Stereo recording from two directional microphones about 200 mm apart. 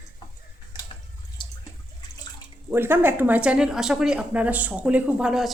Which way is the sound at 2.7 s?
10° right (ahead or behind).